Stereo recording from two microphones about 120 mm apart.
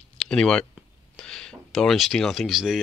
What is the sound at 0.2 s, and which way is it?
Speech, 5° left (ahead or behind).